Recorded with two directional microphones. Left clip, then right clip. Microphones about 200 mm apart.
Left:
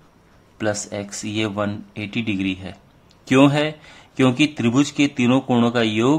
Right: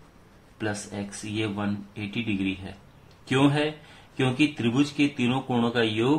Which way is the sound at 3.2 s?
45° left (ahead or behind).